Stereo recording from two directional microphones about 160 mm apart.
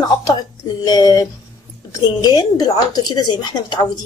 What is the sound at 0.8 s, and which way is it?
A woman's voice, 25° left (ahead or behind).